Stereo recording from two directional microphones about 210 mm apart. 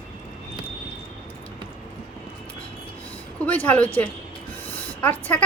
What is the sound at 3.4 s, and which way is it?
A woman's voice, 5° left (ahead or behind).